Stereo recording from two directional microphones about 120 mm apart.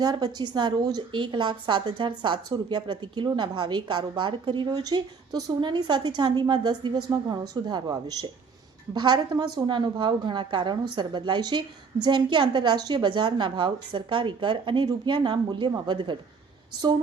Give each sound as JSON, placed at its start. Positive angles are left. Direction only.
{"t": 0.0, "sound": "speech", "side_deg": -35}